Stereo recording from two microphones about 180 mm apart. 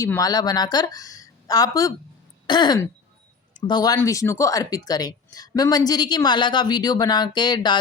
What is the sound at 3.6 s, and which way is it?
Speech, 20° left (ahead or behind).